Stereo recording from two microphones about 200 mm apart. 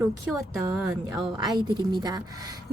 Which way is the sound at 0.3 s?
Centre (ahead or behind).